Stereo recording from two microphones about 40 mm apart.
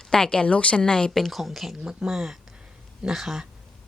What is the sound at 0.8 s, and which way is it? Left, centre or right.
Speech, left.